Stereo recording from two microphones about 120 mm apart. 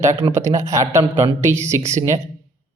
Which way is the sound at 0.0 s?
25° right (ahead or behind).